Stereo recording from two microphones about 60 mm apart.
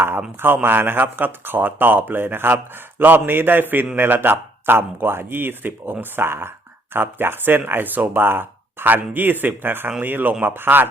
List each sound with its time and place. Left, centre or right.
0.3 s a man's voice: right